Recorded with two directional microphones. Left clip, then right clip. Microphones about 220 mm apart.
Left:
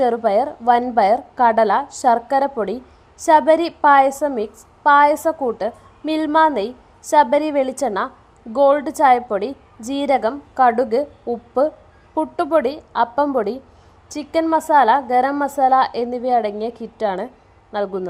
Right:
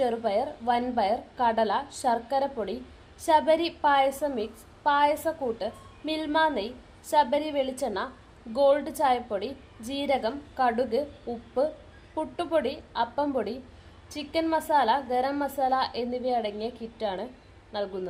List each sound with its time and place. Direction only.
0.0 s a woman's voice: 30° left (ahead or behind)